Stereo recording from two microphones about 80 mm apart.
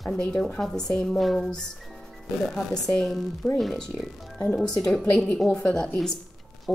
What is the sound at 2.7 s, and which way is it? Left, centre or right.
A woman's voice, centre.